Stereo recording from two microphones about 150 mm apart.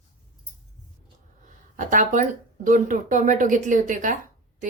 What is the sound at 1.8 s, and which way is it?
A woman's voice, 60° right (ahead or behind).